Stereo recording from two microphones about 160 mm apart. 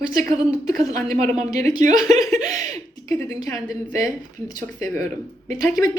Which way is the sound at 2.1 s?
20° left (ahead or behind).